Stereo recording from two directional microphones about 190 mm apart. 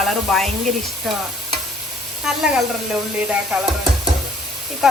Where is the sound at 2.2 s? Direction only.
5° right (ahead or behind).